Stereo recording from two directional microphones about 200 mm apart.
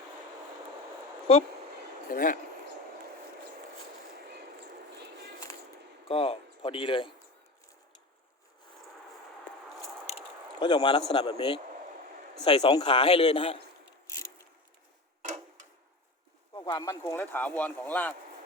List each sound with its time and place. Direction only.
2.0 s speech: 40° left (ahead or behind)
6.1 s speech: 30° left (ahead or behind)
10.1 s a sound: 25° left (ahead or behind)
11.1 s speech: 20° left (ahead or behind)
16.6 s speech: 20° left (ahead or behind)